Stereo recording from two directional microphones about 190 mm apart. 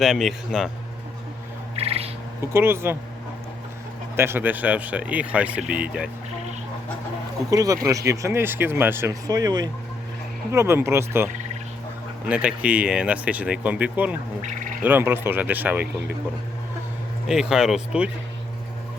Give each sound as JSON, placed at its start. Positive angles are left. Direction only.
{"t": 0.0, "sound": "speech", "side_deg": 0}
{"t": 1.7, "sound": "owl", "side_deg": -30}
{"t": 2.5, "sound": "speech", "side_deg": -15}
{"t": 4.2, "sound": "speech", "side_deg": -10}
{"t": 7.5, "sound": "speech", "side_deg": -20}
{"t": 17.2, "sound": "speech", "side_deg": -5}